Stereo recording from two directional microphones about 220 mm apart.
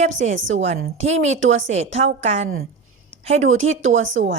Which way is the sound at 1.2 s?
60° right (ahead or behind).